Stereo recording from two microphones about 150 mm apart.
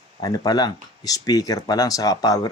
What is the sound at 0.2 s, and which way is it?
Speech, 25° left (ahead or behind).